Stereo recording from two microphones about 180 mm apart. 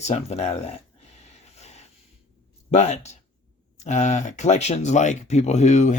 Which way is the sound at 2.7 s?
40° left (ahead or behind).